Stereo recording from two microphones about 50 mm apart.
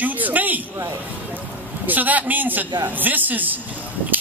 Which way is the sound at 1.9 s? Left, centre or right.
Right.